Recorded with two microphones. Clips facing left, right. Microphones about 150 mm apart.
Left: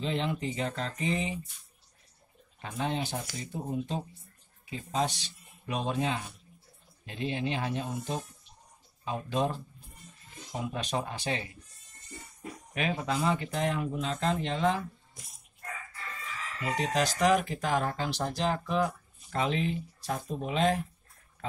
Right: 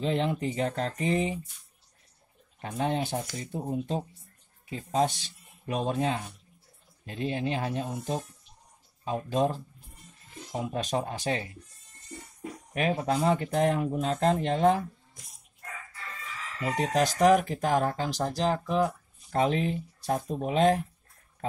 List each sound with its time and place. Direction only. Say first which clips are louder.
0.0 s speech: right 4 dB; 50° right (ahead or behind)
2.6 s speech: right 3 dB; 50° right (ahead or behind)
13.0 s speech: right 3 dB; 50° right (ahead or behind)
16.6 s speech: right 3 dB; 50° right (ahead or behind)